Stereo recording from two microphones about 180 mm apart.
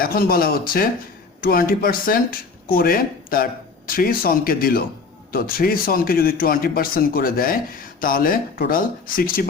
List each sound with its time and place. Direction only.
0.0 s speech: 55° left (ahead or behind)